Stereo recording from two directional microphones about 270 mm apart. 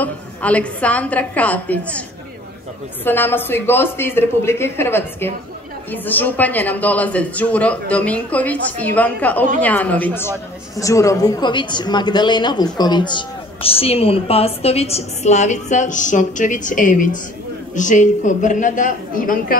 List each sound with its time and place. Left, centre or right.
0.0 s a woman's voice: centre; by 19.6 s left